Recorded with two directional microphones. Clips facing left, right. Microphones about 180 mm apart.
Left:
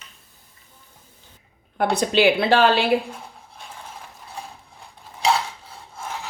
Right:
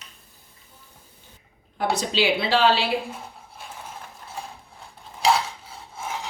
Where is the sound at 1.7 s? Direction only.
55° left (ahead or behind).